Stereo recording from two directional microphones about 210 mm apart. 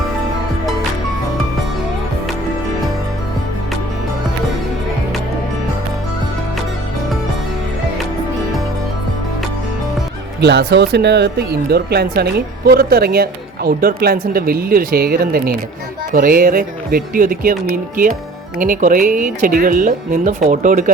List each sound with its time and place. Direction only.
10.4 s speech: 50° right (ahead or behind)